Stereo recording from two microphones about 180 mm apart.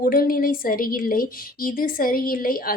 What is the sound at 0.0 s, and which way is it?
A woman's voice, 55° left (ahead or behind).